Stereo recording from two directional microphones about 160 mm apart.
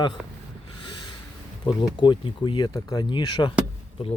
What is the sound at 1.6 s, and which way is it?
Speech, 30° left (ahead or behind).